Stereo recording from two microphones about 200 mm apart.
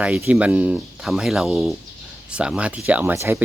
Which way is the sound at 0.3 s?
5° right (ahead or behind).